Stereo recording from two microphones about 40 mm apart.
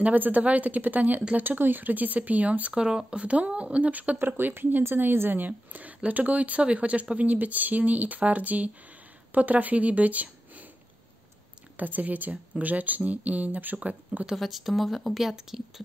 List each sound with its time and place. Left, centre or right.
0.0 s speech: right
2.7 s speech: centre
3.2 s speech: right
4.2 s speech: right
4.8 s a woman's voice: right
5.4 s speech: right
11.7 s speech: right
14.3 s speech: centre